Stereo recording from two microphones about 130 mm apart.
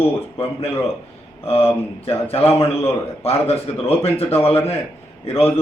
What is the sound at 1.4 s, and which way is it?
A man's voice, 50° left (ahead or behind).